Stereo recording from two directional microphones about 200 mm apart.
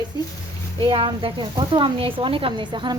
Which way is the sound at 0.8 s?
25° right (ahead or behind).